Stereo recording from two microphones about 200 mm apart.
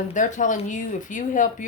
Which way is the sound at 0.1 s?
40° left (ahead or behind).